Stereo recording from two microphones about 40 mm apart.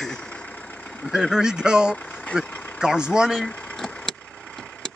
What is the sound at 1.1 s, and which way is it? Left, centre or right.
Speech, centre.